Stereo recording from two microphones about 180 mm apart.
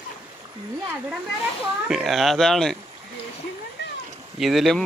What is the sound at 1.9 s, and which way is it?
Speech, centre (ahead or behind).